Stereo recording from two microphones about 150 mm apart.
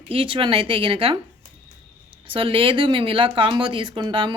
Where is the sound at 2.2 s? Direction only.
35° right (ahead or behind).